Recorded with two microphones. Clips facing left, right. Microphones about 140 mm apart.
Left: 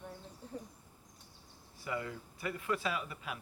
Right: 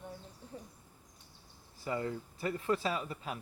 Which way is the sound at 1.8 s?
35° right (ahead or behind).